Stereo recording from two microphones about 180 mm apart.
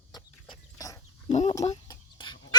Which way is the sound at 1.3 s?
40° left (ahead or behind).